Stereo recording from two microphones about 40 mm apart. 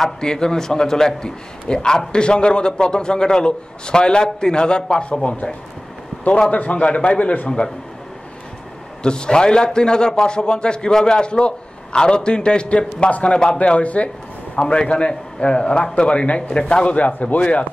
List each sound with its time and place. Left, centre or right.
0.0 s a man's voice: centre
5.2 s a man's voice: left
9.0 s a man's voice: left